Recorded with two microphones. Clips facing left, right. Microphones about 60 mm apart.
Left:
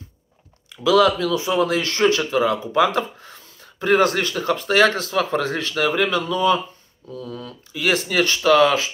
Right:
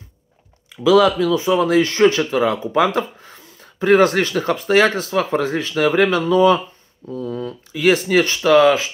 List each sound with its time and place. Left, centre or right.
0.8 s speech: right